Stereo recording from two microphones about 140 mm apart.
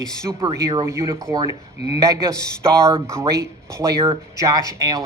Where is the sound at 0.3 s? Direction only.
25° right (ahead or behind).